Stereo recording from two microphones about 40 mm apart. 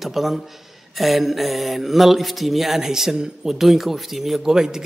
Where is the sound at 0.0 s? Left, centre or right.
Centre.